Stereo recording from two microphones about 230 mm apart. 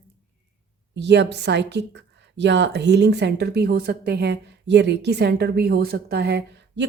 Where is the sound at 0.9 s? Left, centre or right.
Right.